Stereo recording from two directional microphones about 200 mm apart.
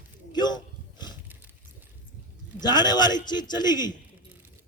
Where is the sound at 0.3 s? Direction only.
20° left (ahead or behind).